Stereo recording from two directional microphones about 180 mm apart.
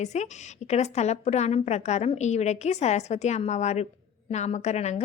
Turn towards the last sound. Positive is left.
turn(degrees=40)  # may be behind; listen again after turning